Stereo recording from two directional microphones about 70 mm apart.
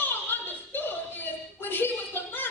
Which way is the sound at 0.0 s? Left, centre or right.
Left.